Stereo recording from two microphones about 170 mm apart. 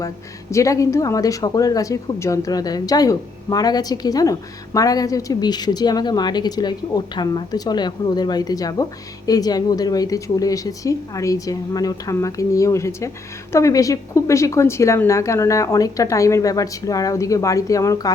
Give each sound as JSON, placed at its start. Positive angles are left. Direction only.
{"t": 0.5, "sound": "a woman's voice", "side_deg": 20}